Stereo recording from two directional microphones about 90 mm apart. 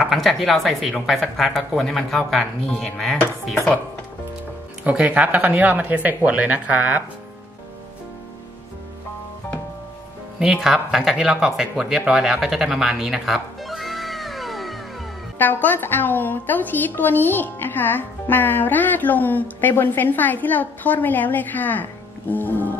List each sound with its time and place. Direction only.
0.0 s speech: centre (ahead or behind)
4.8 s speech: 15° right (ahead or behind)
10.4 s speech: 5° right (ahead or behind)
15.3 s a woman's voice: 20° left (ahead or behind)